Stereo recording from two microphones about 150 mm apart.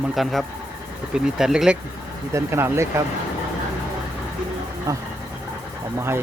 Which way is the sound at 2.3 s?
20° right (ahead or behind).